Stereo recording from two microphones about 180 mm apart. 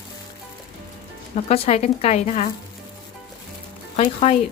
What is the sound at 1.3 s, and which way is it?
Speech, 35° left (ahead or behind).